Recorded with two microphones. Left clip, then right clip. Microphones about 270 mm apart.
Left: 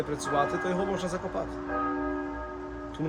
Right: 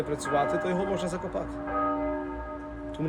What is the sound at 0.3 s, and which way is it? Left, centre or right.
Speech, centre.